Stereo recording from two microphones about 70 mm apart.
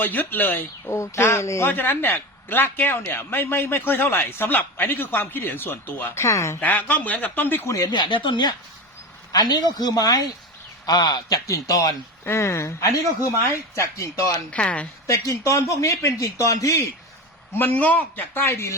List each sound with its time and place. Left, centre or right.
0.0 s a man's voice: left
0.9 s speech: left
6.1 s speech: left
6.6 s a man's voice: left
7.9 s speech: left
9.3 s speech: left
11.4 s speech: left
12.2 s speech: left
14.5 s a woman's voice: centre
15.0 s speech: left
17.5 s a man's voice: left